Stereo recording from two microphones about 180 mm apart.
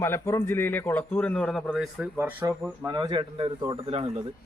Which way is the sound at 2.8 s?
25° right (ahead or behind).